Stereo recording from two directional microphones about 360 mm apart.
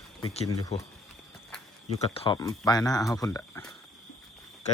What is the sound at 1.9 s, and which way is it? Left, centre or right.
Speech, centre.